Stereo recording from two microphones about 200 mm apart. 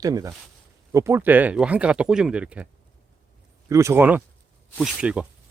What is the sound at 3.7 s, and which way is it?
Speech, 15° right (ahead or behind).